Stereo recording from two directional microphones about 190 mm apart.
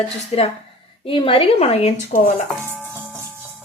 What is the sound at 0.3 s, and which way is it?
A woman's voice, 30° left (ahead or behind).